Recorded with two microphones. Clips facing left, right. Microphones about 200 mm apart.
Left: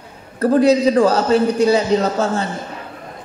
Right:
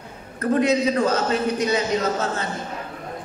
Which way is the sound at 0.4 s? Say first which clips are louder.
Left 6 dB; 35° left (ahead or behind).